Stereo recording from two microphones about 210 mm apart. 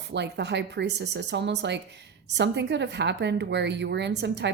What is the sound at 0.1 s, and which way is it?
A woman's voice, 55° right (ahead or behind).